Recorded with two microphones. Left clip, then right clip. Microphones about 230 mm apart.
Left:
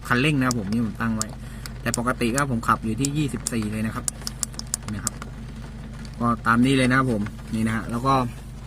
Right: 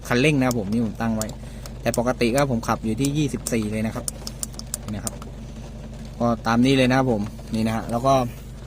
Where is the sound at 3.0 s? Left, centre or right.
Right.